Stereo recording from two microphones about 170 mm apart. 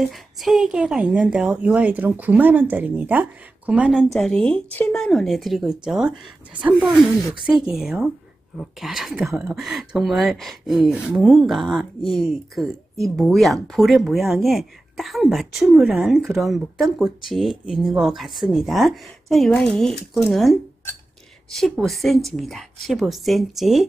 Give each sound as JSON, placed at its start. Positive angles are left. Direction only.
{"t": 0.0, "sound": "speech", "side_deg": 0}